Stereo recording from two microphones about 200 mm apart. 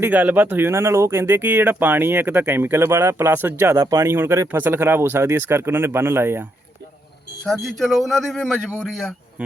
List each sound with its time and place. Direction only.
0.0 s speech: 10° right (ahead or behind)
7.4 s speech: centre (ahead or behind)